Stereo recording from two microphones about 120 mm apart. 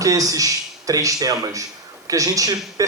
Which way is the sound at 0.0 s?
30° right (ahead or behind).